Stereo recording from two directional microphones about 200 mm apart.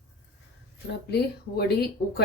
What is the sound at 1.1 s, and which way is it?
Speech, 55° left (ahead or behind).